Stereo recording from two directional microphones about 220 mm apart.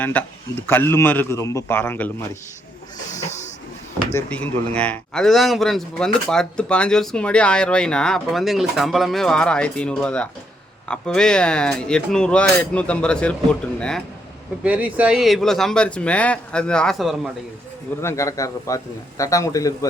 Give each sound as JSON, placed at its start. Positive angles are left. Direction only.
{"t": 0.0, "sound": "a man's voice", "side_deg": 5}
{"t": 3.1, "sound": "printer", "side_deg": 30}
{"t": 4.1, "sound": "a man's voice", "side_deg": 5}
{"t": 14.6, "sound": "a man's voice", "side_deg": -5}
{"t": 18.0, "sound": "a man's voice", "side_deg": 15}